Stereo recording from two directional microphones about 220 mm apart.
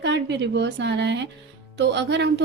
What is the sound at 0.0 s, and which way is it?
A woman's voice, 55° right (ahead or behind).